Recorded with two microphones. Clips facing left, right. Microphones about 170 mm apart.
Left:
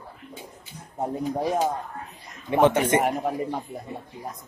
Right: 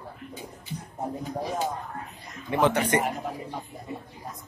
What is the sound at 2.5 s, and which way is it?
Speech, 20° left (ahead or behind).